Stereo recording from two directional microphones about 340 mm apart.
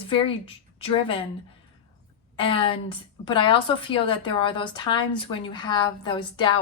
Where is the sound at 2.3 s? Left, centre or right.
Centre.